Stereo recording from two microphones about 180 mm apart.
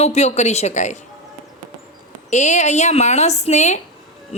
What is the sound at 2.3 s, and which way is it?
Speech, 40° left (ahead or behind).